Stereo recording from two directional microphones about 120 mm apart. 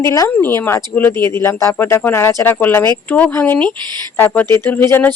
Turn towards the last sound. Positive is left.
turn(degrees=20)  # may be behind; listen again after turning